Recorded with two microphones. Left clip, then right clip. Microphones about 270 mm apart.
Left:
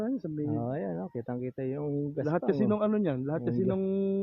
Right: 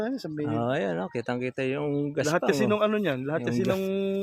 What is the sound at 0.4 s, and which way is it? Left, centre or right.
Speech, right.